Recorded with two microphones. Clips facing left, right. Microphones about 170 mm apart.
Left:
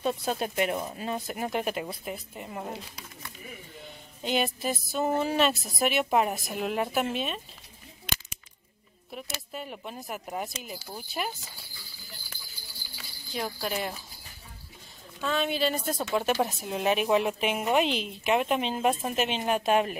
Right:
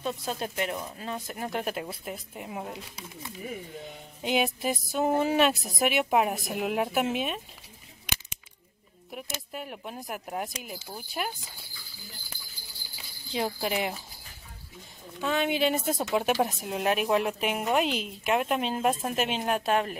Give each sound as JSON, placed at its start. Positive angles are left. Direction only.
{"t": 0.0, "sound": "speech", "side_deg": 15}
{"t": 1.5, "sound": "a woman's voice", "side_deg": 5}
{"t": 4.2, "sound": "speech", "side_deg": -10}
{"t": 5.6, "sound": "a woman's voice", "side_deg": 0}
{"t": 9.1, "sound": "a woman's voice", "side_deg": -5}
{"t": 12.9, "sound": "speech", "side_deg": -20}
{"t": 15.1, "sound": "speech", "side_deg": -10}
{"t": 16.2, "sound": "a woman's voice", "side_deg": -10}